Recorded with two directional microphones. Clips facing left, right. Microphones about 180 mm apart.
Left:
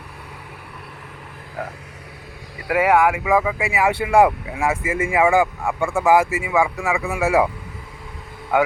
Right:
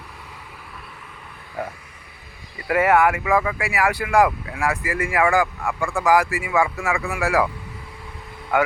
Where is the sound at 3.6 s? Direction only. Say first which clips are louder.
Left 2 dB; 20° left (ahead or behind).